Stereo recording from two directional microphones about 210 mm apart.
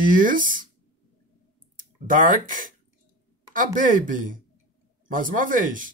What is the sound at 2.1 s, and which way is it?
Speech, 40° right (ahead or behind).